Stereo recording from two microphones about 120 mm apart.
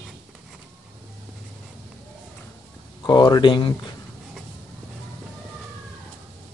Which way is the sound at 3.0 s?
40° left (ahead or behind).